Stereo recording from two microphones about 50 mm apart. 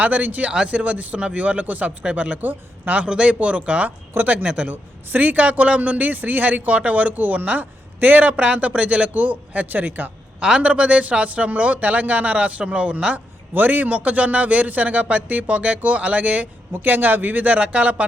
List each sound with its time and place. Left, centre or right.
0.0 s a man's voice: right
3.0 s a man's voice: right
10.4 s a man's voice: right
13.5 s a man's voice: right
16.7 s a man's voice: right